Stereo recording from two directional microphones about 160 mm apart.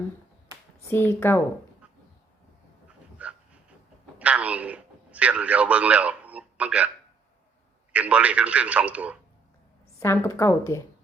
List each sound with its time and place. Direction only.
0.9 s a woman's voice: 15° left (ahead or behind)
3.2 s dog: 10° right (ahead or behind)
4.2 s a sound: 10° right (ahead or behind)
7.9 s speech: 10° right (ahead or behind)
10.0 s a woman's voice: 15° left (ahead or behind)